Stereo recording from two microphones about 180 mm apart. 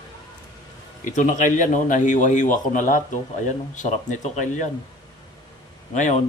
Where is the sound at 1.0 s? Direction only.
45° left (ahead or behind).